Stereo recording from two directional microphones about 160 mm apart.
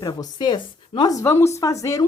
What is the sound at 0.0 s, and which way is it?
Speech, 25° left (ahead or behind).